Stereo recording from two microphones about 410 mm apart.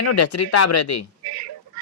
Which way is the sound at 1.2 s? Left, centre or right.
Right.